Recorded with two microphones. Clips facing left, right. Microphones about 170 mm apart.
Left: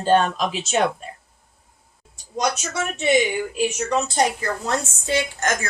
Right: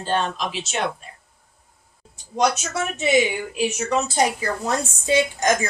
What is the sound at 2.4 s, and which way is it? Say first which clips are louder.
A woman's voice: right 2 dB; 5° right (ahead or behind).